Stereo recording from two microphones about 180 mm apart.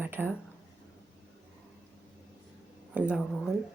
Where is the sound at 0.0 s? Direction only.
10° right (ahead or behind).